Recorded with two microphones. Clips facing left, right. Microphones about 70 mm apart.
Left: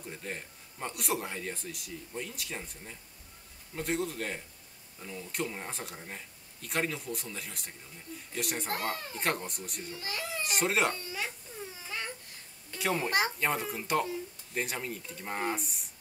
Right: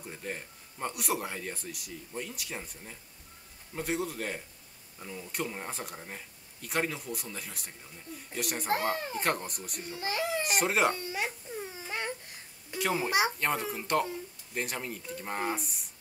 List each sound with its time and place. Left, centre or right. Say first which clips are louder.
0.0 s a child's voice: right 1 dB; centre
4.9 s speech: even; centre
5.3 s a child's voice: even; centre
8.6 s a child's voice: right 5 dB; right
9.2 s a child's voice: right 1 dB; centre
9.9 s a child's voice: right 7 dB; right
10.4 s a child's voice: even; centre
11.0 s a sound: right 3 dB; right
12.7 s a child's voice: right 1 dB; centre